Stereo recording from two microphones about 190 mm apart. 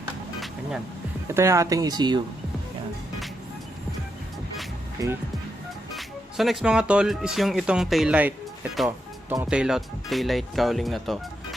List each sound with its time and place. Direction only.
0.3 s vehicle: centre (ahead or behind)
1.3 s speech: 15° right (ahead or behind)
5.0 s speech: 20° right (ahead or behind)
6.0 s speech: centre (ahead or behind)
9.3 s speech: 10° right (ahead or behind)